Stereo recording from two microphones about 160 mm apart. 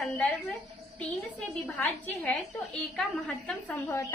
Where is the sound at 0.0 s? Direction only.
5° left (ahead or behind).